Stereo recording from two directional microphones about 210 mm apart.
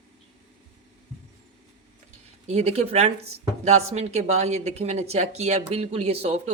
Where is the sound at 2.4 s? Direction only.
30° right (ahead or behind).